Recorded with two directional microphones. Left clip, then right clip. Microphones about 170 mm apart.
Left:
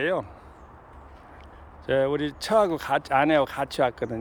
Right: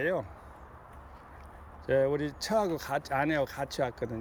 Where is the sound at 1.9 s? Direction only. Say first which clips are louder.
Left 4 dB; 5° left (ahead or behind).